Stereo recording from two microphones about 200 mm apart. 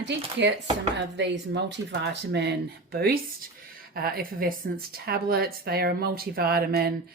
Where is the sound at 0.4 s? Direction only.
60° right (ahead or behind).